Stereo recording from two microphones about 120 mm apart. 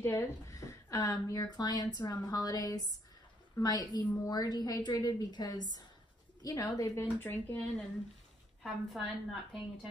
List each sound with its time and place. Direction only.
0.0 s a woman's voice: 25° left (ahead or behind)
7.2 s speech: 15° left (ahead or behind)
8.6 s a woman's voice: centre (ahead or behind)